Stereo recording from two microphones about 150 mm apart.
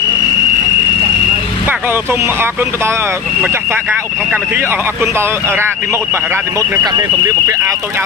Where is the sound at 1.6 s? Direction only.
15° right (ahead or behind).